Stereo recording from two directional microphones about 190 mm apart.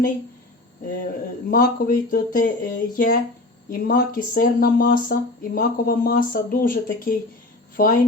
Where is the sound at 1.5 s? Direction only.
50° left (ahead or behind).